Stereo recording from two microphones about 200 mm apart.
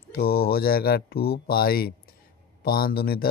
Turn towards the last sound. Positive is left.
turn(degrees=50)  # may be behind; listen again after turning